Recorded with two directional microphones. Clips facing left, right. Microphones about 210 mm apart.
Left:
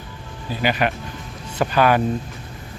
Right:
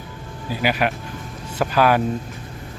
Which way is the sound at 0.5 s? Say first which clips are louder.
Even; 5° right (ahead or behind).